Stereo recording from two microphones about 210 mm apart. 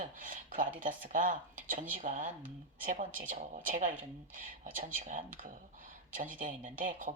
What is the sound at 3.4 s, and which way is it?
Speech, 40° right (ahead or behind).